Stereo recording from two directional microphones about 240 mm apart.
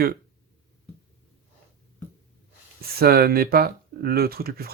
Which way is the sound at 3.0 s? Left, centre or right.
Right.